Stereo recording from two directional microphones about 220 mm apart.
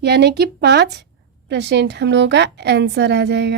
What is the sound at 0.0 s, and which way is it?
A woman's voice, 50° right (ahead or behind).